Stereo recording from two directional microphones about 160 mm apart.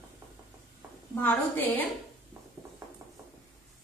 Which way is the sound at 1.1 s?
15° left (ahead or behind).